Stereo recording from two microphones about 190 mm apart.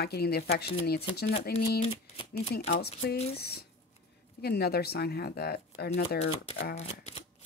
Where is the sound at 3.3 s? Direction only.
55° left (ahead or behind).